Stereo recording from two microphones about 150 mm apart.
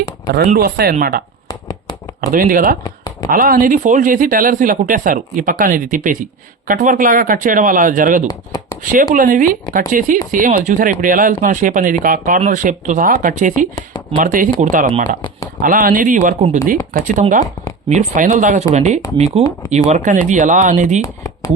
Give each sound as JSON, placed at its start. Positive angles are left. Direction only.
{"t": 0.3, "sound": "speech", "side_deg": -90}
{"t": 1.5, "sound": "a sound", "side_deg": 25}
{"t": 2.3, "sound": "speech", "side_deg": -70}
{"t": 2.8, "sound": "a sound", "side_deg": 25}
{"t": 3.2, "sound": "speech", "side_deg": -70}
{"t": 19.9, "sound": "speech", "side_deg": -55}
{"t": 21.0, "sound": "speech", "side_deg": 20}